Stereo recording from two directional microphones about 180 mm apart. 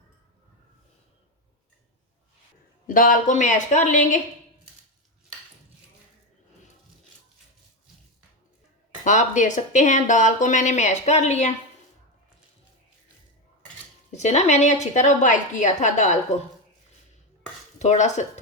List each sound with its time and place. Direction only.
2.8 s speech: 50° left (ahead or behind)
9.0 s speech: 45° left (ahead or behind)
14.1 s a woman's voice: 40° left (ahead or behind)
17.7 s a woman's voice: 40° left (ahead or behind)